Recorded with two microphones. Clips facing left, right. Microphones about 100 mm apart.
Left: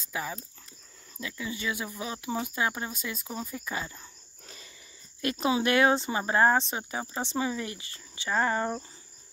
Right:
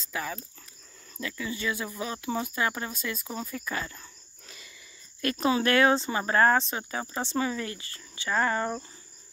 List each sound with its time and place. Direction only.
0.0 s speech: 15° left (ahead or behind)
3.3 s speech: 5° left (ahead or behind)
4.5 s a sound: 35° left (ahead or behind)
5.2 s speech: 20° left (ahead or behind)